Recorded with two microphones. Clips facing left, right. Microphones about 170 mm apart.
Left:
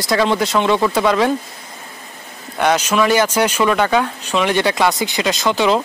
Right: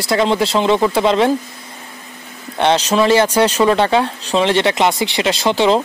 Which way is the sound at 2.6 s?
30° right (ahead or behind).